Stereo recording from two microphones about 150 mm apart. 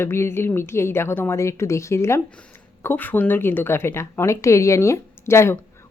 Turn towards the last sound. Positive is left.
turn(degrees=20)  # may be behind; listen again after turning